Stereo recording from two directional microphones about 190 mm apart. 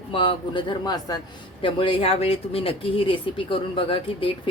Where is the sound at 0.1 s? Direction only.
25° left (ahead or behind).